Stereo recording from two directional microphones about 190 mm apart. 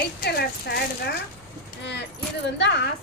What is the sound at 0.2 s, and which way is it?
Speech, 55° left (ahead or behind).